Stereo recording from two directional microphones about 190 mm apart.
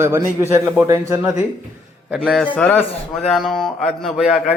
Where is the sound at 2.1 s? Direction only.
Centre (ahead or behind).